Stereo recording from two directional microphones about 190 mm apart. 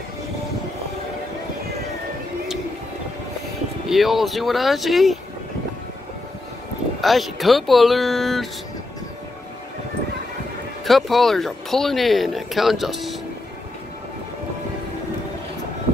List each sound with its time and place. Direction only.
3.9 s speech: centre (ahead or behind)
7.0 s speech: centre (ahead or behind)
10.9 s speech: centre (ahead or behind)